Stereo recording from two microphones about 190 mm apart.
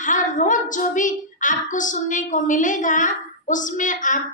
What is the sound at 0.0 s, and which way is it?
A woman's voice, 40° left (ahead or behind).